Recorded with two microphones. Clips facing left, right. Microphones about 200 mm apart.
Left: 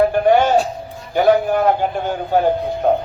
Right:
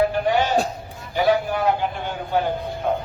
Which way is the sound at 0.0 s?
50° left (ahead or behind).